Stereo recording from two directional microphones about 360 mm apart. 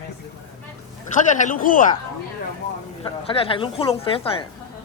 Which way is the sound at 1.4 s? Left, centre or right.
Left.